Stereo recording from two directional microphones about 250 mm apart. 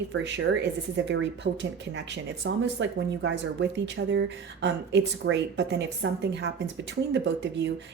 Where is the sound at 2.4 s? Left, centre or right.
Right.